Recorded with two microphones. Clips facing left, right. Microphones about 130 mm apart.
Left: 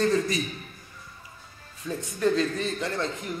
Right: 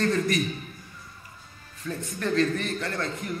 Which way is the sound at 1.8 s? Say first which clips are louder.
Left 5 dB; 15° left (ahead or behind).